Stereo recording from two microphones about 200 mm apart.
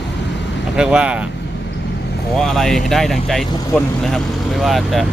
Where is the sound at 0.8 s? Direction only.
5° right (ahead or behind).